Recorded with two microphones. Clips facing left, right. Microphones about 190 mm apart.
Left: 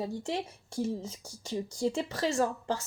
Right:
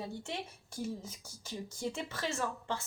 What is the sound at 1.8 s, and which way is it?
A woman's voice, 30° left (ahead or behind).